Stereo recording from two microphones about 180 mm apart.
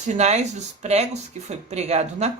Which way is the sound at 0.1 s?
40° right (ahead or behind).